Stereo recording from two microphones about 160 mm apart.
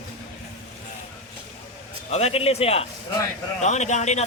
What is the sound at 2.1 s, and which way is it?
Speech, 40° left (ahead or behind).